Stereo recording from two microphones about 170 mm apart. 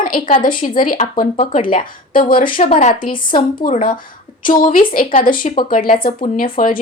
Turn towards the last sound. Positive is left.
turn(degrees=55)  # may be behind; listen again after turning